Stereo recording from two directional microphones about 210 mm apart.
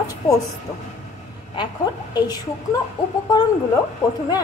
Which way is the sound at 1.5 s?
20° left (ahead or behind).